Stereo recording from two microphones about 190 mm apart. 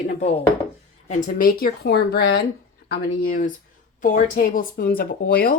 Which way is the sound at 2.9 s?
45° left (ahead or behind).